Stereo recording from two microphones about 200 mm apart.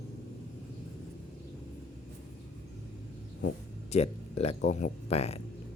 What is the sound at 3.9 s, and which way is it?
Speech, 30° left (ahead or behind).